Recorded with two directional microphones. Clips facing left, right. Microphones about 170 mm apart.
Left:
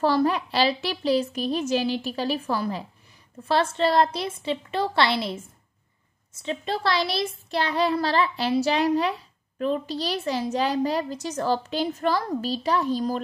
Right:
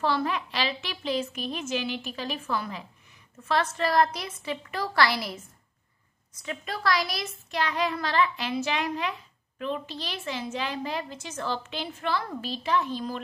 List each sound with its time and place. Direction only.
0.0 s a woman's voice: 35° left (ahead or behind)